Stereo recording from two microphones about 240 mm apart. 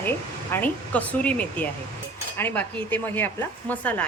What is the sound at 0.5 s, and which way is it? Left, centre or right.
Speech, centre.